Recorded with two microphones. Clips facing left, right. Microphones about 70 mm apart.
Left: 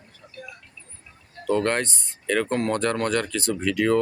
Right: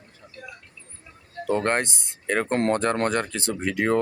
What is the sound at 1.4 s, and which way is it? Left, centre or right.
Speech, right.